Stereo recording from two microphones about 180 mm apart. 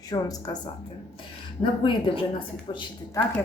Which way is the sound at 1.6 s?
30° left (ahead or behind).